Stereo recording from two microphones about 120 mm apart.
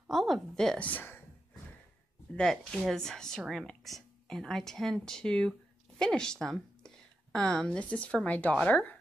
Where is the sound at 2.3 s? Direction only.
5° left (ahead or behind).